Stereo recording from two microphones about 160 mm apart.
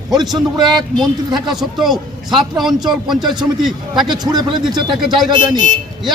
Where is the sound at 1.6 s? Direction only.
Centre (ahead or behind).